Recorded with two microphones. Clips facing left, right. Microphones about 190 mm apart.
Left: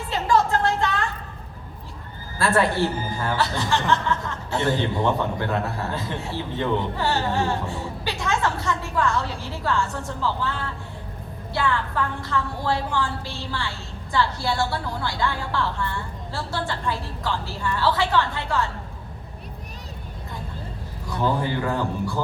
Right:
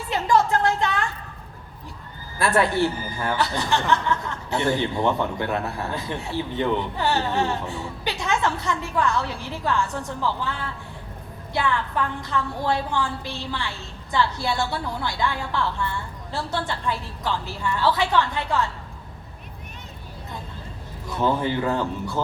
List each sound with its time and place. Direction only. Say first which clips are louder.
0.1 s a sound: right 1 dB; 15° right (ahead or behind)
2.4 s speech: even; 15° right (ahead or behind)
21.2 s a man's voice: right 1 dB; 20° right (ahead or behind)